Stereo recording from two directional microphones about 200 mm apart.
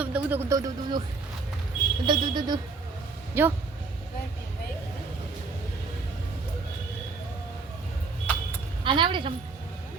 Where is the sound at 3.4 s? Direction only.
10° right (ahead or behind).